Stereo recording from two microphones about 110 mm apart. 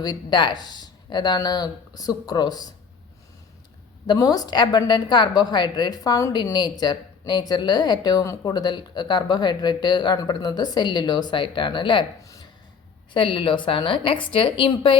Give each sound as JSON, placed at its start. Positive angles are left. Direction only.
{"t": 0.0, "sound": "speech", "side_deg": 40}
{"t": 4.0, "sound": "speech", "side_deg": 35}
{"t": 12.2, "sound": "a sound", "side_deg": 30}
{"t": 13.1, "sound": "a woman's voice", "side_deg": 50}